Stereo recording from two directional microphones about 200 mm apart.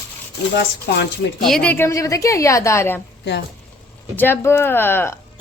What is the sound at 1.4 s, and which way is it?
Speech, 5° left (ahead or behind).